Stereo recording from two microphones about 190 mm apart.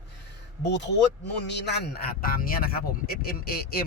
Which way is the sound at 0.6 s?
65° left (ahead or behind).